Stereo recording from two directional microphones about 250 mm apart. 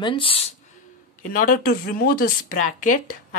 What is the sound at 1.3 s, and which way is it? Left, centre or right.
Speech, left.